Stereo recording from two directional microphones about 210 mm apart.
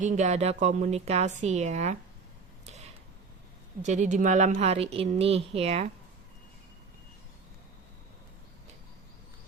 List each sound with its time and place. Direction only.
0.0 s a woman's voice: 35° right (ahead or behind)
3.8 s a woman's voice: 35° right (ahead or behind)